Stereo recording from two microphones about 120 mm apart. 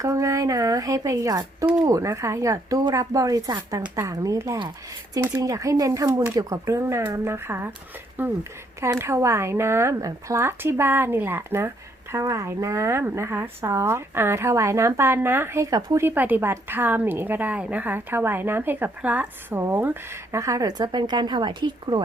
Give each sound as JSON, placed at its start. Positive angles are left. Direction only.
{"t": 0.0, "sound": "a woman's voice", "side_deg": -25}
{"t": 16.0, "sound": "a woman's voice", "side_deg": -15}